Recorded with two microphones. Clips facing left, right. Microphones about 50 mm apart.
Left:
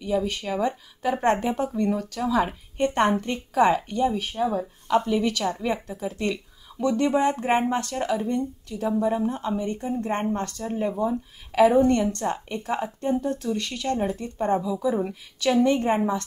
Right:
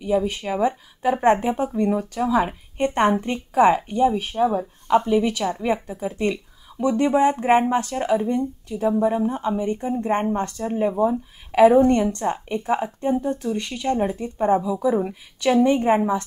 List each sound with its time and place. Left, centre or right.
0.0 s a woman's voice: centre